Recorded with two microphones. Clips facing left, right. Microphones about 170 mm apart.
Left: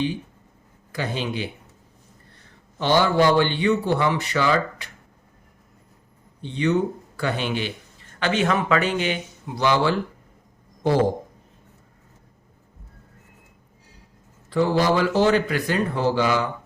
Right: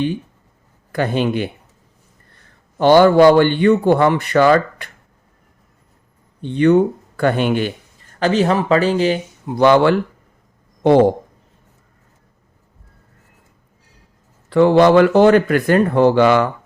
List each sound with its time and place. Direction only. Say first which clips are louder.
0.9 s speech: right 9 dB; 55° right (ahead or behind)
2.7 s a man's voice: right 9 dB; 50° right (ahead or behind)
6.4 s speech: right 9 dB; 55° right (ahead or behind)
8.2 s speech: right 6 dB; 35° right (ahead or behind)
9.5 s speech: right 9 dB; 55° right (ahead or behind)
14.5 s speech: right 9 dB; 65° right (ahead or behind)